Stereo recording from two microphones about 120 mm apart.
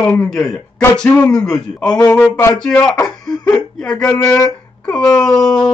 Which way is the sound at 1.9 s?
30° left (ahead or behind).